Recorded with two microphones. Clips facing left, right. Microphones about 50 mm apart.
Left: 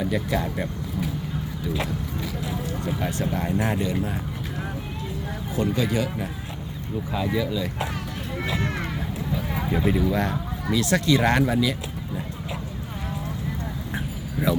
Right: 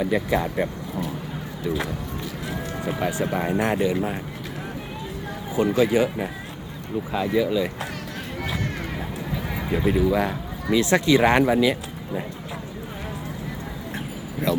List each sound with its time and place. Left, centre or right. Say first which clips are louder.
0.0 s speech: right 3 dB; centre
2.8 s speech: right 4 dB; centre
5.5 s speech: right 5 dB; centre
7.3 s speech: right 7 dB; centre
8.6 s run: left 2 dB; left
9.7 s speech: right 3 dB; centre
10.7 s speech: right 3 dB; right
14.5 s speech: even; centre